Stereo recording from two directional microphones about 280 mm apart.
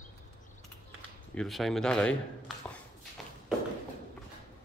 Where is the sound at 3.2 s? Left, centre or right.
Centre.